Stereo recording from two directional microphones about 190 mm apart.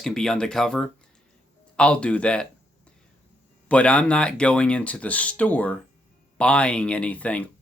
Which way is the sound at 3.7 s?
5° left (ahead or behind).